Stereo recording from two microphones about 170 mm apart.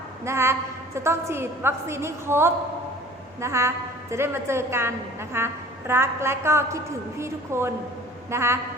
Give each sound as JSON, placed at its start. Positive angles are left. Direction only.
{"t": 0.3, "sound": "a woman's voice", "side_deg": -15}